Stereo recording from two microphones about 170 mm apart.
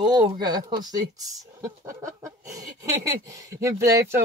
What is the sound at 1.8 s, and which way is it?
Speech, 50° right (ahead or behind).